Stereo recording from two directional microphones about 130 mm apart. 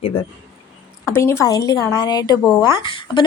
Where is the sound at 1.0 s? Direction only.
20° left (ahead or behind).